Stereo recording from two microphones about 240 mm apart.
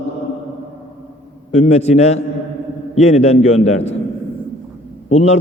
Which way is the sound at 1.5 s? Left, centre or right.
Left.